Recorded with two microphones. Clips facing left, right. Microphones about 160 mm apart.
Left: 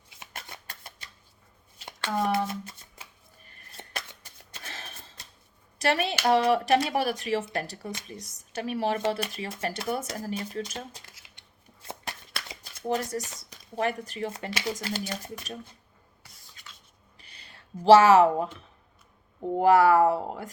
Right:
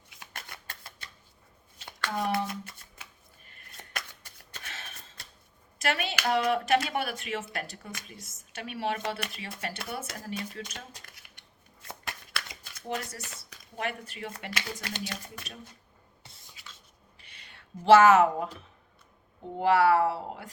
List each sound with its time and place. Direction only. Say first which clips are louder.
0.2 s shuffling cards: left 2 dB; 25° left (ahead or behind)
3.4 s scissors: left 4 dB; 25° left (ahead or behind)
4.6 s a sound: left 3 dB; 35° left (ahead or behind)
5.8 s speech: left 5 dB; 35° left (ahead or behind)
10.8 s a sound: left 6 dB; 20° left (ahead or behind)
11.9 s shuffling cards: left 2 dB; 25° left (ahead or behind)
13.2 s speech: left 1 dB; 20° left (ahead or behind)
13.7 s speech: left 6 dB; 35° left (ahead or behind)
14.5 s speech: left 6 dB; 25° left (ahead or behind)
16.2 s writing: right 2 dB; 25° right (ahead or behind)
17.2 s a sound: left 2 dB; 35° left (ahead or behind)
19.5 s speech: left 4 dB; 40° left (ahead or behind)